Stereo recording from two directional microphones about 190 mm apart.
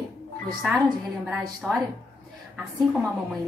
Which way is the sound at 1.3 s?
5° right (ahead or behind).